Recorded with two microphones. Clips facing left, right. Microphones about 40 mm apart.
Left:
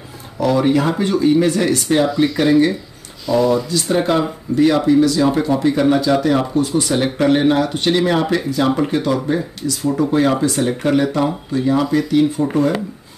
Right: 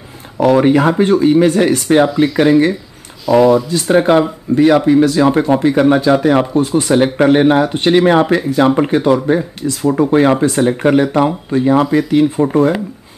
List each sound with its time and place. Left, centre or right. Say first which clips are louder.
0.4 s speech: right 5 dB; right
3.3 s speech: right 6 dB; centre
4.0 s speech: right 6 dB; right